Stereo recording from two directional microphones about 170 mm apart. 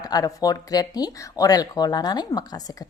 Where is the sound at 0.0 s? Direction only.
20° left (ahead or behind).